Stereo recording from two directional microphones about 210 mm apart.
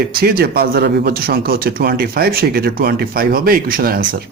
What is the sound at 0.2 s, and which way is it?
Speech, 45° right (ahead or behind).